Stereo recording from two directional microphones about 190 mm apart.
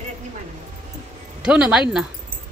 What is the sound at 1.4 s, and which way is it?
Speech, 5° right (ahead or behind).